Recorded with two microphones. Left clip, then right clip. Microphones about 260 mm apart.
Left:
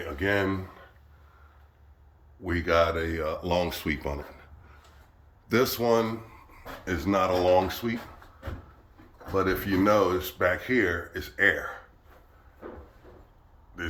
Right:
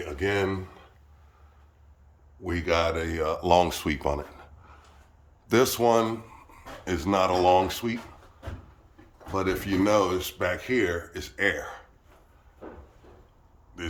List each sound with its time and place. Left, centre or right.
0.2 s speech: centre
2.4 s speech: centre
5.5 s speech: centre
6.8 s speech: centre
7.4 s speech: centre
9.3 s speech: centre